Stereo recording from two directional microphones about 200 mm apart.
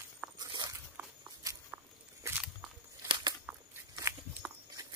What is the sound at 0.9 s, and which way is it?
Walk, 10° right (ahead or behind).